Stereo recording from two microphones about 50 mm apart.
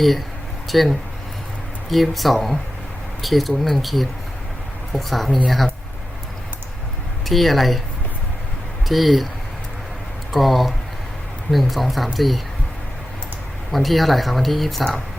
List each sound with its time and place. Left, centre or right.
0.7 s speech: centre
7.3 s speech: centre
8.9 s speech: centre
10.3 s speech: centre
13.7 s speech: centre